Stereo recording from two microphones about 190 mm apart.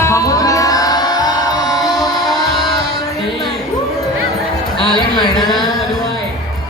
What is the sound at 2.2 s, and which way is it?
Music, centre (ahead or behind).